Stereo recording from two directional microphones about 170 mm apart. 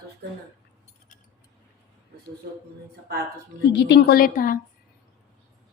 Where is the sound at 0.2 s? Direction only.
70° right (ahead or behind).